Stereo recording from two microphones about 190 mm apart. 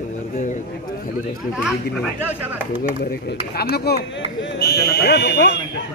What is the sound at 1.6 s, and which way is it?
Speech, 5° right (ahead or behind).